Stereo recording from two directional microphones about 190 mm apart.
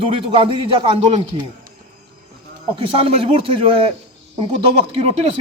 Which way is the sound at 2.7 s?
30° right (ahead or behind).